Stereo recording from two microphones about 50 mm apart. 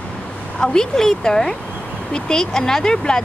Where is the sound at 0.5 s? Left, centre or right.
Centre.